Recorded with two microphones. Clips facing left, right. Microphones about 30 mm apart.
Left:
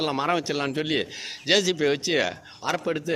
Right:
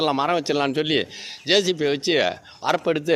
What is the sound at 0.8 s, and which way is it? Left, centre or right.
Speech, right.